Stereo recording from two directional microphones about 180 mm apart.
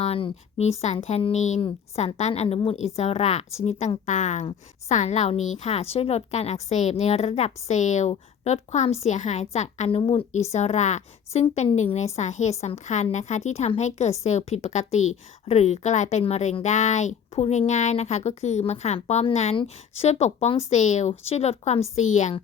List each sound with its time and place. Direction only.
0.0 s speech: 30° left (ahead or behind)